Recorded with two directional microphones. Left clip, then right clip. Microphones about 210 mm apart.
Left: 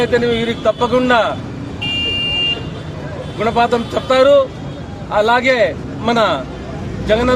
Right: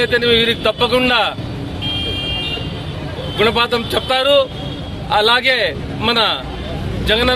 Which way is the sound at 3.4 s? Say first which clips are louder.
Even; 10° right (ahead or behind).